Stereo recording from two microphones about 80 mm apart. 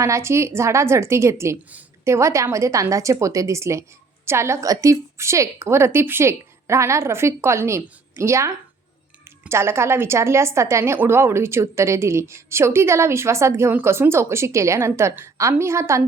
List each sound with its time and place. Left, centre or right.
0.0 s a woman's voice: right